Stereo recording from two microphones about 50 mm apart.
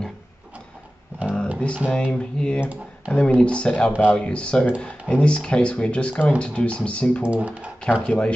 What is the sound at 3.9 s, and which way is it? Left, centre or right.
Speech, right.